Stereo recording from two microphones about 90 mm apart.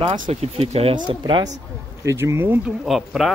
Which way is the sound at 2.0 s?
30° right (ahead or behind).